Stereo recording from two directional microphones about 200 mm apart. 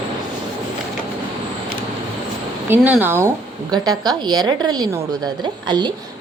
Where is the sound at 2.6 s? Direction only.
10° right (ahead or behind).